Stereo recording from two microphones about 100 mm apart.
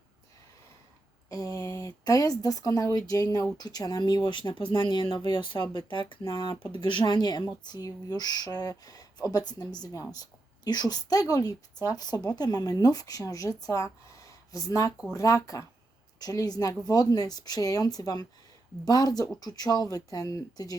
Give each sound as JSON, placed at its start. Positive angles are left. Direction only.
{"t": 1.3, "sound": "speech", "side_deg": 35}